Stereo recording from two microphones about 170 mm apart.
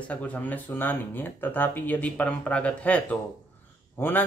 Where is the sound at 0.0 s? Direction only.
10° left (ahead or behind).